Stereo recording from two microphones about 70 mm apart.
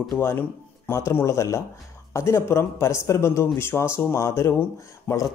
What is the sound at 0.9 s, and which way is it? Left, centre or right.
Speech, left.